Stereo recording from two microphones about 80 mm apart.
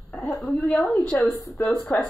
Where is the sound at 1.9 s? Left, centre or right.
Left.